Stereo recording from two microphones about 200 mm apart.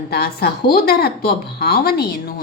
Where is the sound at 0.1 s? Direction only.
50° left (ahead or behind).